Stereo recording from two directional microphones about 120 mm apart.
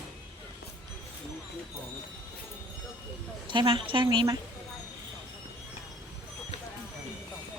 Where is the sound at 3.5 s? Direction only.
45° right (ahead or behind).